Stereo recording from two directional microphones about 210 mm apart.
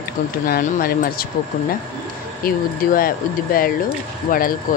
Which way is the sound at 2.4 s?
45° left (ahead or behind).